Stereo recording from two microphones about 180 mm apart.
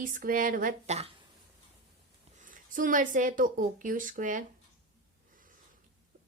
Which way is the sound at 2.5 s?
50° right (ahead or behind).